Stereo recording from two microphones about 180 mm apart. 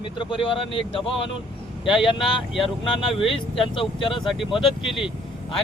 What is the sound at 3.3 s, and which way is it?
Speech, 30° left (ahead or behind).